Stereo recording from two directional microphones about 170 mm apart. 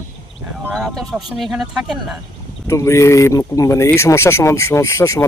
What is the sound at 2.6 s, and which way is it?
Speech, 15° left (ahead or behind).